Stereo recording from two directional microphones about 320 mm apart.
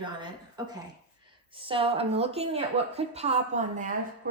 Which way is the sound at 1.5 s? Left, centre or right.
Centre.